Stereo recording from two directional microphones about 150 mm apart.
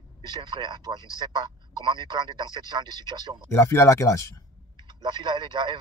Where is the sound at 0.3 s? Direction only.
30° right (ahead or behind).